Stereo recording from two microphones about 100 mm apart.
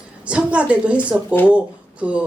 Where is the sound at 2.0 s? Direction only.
15° right (ahead or behind).